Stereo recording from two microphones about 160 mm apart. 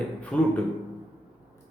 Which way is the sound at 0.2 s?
10° left (ahead or behind).